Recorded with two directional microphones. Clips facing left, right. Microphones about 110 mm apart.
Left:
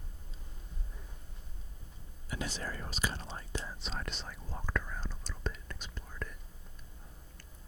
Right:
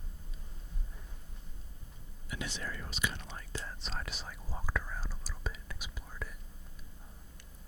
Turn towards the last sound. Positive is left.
turn(degrees=-5)  # may be behind; listen again after turning